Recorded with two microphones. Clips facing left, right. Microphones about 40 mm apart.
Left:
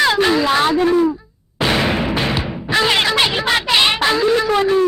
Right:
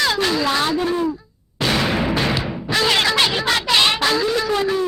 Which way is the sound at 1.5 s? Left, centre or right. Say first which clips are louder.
Left 2 dB; centre.